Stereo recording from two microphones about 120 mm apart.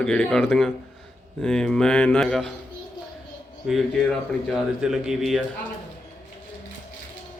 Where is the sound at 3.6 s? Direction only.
Centre (ahead or behind).